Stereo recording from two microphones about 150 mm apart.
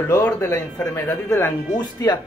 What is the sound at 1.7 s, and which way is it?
Speech, 25° left (ahead or behind).